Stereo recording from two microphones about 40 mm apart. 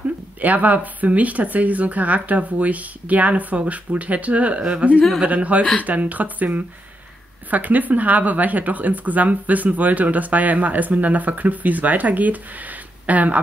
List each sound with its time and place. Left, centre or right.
0.4 s a woman's voice: right